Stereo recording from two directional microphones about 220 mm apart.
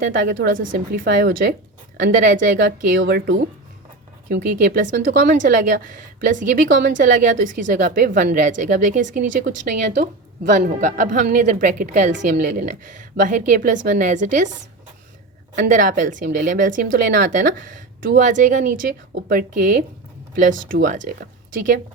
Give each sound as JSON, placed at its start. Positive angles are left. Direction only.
{"t": 0.3, "sound": "a woman's voice", "side_deg": -60}
{"t": 0.7, "sound": "speech", "side_deg": -40}
{"t": 5.4, "sound": "a woman's voice", "side_deg": -35}
{"t": 6.3, "sound": "speech", "side_deg": -50}
{"t": 6.9, "sound": "a woman's voice", "side_deg": -35}
{"t": 10.6, "sound": "a woman's voice", "side_deg": -35}
{"t": 15.5, "sound": "a woman's voice", "side_deg": -35}